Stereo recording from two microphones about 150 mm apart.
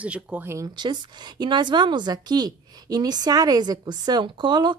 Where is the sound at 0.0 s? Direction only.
10° right (ahead or behind).